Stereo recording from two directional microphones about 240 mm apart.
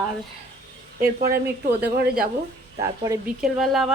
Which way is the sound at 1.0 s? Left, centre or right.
Right.